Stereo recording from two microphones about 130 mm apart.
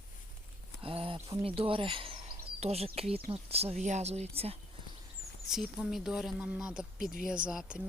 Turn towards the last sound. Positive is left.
turn(degrees=-5)  # may be behind; listen again after turning